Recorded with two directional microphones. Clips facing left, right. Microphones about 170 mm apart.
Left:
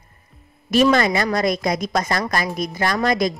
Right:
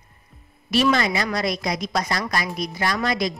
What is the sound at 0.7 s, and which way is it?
Speech, 45° left (ahead or behind).